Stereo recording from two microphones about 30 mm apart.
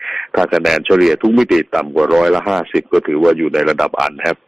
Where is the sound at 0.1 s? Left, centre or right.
Centre.